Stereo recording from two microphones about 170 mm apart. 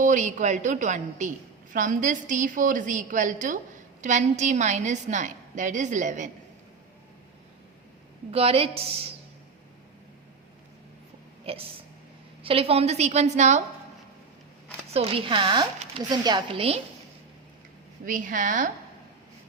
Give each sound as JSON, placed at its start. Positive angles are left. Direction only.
{"t": 0.0, "sound": "a woman's voice", "side_deg": -45}
{"t": 8.3, "sound": "a woman's voice", "side_deg": -35}
{"t": 11.5, "sound": "a woman's voice", "side_deg": -35}
{"t": 14.9, "sound": "a woman's voice", "side_deg": -30}
{"t": 18.0, "sound": "a woman's voice", "side_deg": -50}